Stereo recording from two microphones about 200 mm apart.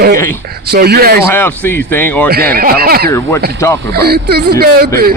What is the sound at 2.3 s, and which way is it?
Speech, 50° right (ahead or behind).